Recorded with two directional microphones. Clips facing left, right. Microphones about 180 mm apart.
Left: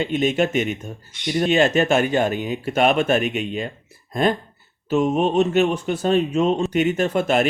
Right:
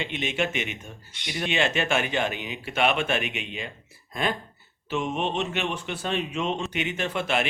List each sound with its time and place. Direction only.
0.0 s speech: 40° left (ahead or behind)